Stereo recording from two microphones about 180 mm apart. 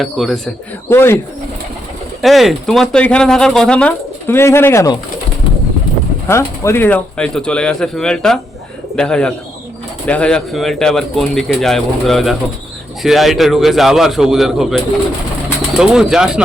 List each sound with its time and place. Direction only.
0.0 s speech: centre (ahead or behind)
0.9 s speech: 15° left (ahead or behind)
2.2 s speech: centre (ahead or behind); by 4.9 s 15° left (ahead or behind)
6.2 s speech: 15° left (ahead or behind); by 16.4 s 5° right (ahead or behind)